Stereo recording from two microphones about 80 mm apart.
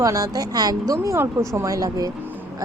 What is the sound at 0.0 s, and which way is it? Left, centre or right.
Speech, right.